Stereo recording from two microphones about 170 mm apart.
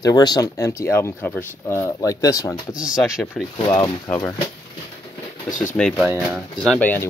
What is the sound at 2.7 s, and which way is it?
Speech, 5° right (ahead or behind).